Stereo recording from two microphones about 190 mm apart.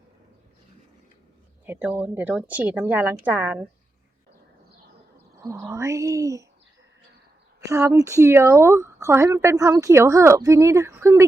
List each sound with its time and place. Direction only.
1.6 s speech: 10° right (ahead or behind)
5.4 s speech: 15° right (ahead or behind)
7.6 s speech: 15° right (ahead or behind)